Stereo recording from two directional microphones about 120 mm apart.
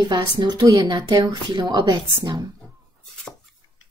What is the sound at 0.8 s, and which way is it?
A woman's voice, 40° right (ahead or behind).